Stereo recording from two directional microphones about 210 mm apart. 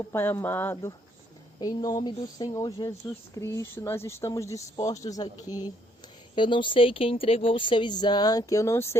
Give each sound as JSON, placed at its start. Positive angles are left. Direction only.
{"t": 0.1, "sound": "speech", "side_deg": 10}
{"t": 6.3, "sound": "speech", "side_deg": 25}